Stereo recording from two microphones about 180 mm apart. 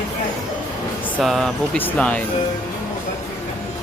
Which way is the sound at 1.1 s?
Centre (ahead or behind).